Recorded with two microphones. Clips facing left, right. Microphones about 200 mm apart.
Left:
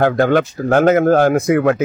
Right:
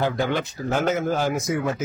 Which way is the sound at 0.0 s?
55° left (ahead or behind).